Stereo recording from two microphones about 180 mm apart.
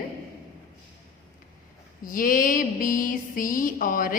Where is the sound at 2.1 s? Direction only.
50° left (ahead or behind).